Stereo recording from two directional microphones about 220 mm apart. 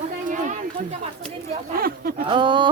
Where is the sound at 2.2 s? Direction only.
20° right (ahead or behind).